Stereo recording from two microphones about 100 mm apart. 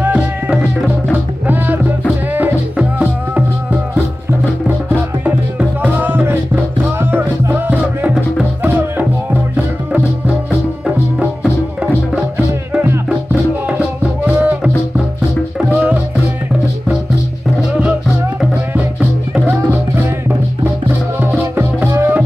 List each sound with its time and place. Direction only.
0.0 s music: 10° right (ahead or behind)
2.3 s music: 15° right (ahead or behind)
13.3 s music: 15° right (ahead or behind)
15.7 s music: 10° right (ahead or behind)
18.9 s music: 15° right (ahead or behind)
21.2 s music: 20° right (ahead or behind)